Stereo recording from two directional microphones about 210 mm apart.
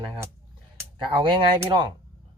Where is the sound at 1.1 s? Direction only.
20° right (ahead or behind).